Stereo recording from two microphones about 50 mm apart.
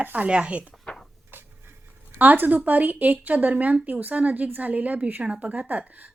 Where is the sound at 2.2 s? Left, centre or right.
Right.